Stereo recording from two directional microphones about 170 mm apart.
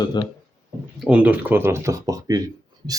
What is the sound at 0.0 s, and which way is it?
Speech, 25° left (ahead or behind).